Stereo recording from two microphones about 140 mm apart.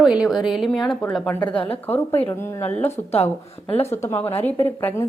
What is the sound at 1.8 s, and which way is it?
A woman's voice, 15° left (ahead or behind).